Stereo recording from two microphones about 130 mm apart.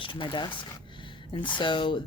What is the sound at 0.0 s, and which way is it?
A woman's voice, 40° left (ahead or behind).